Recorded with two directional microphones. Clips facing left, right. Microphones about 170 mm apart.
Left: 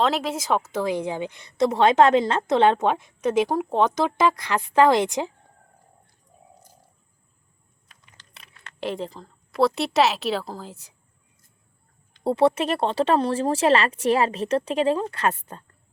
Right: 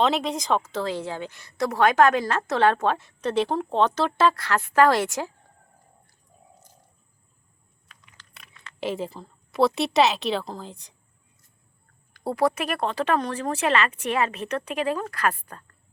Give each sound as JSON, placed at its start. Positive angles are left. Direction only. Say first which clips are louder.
{"t": 0.0, "sound": "a woman's voice", "louder": "even", "side_deg": 0}
{"t": 8.8, "sound": "a woman's voice", "louder": "even", "side_deg": -5}
{"t": 12.1, "sound": "speech", "louder": "left 4 dB", "side_deg": 25}